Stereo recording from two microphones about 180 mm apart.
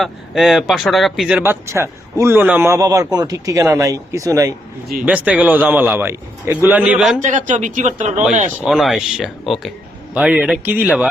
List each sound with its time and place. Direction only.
0.0 s speech: centre (ahead or behind)
7.2 s a man's voice: 45° right (ahead or behind)
8.6 s speech: centre (ahead or behind)